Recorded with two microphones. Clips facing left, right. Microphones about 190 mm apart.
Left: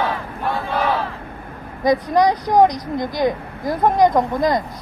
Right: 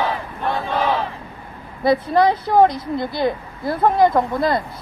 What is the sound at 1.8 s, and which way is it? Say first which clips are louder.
Speech: even; 15° left (ahead or behind).